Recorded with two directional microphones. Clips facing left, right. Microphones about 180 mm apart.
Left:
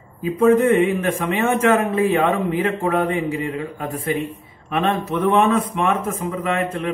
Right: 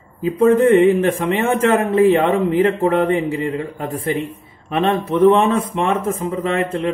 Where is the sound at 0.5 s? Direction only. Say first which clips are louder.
Right 3 dB; 30° right (ahead or behind).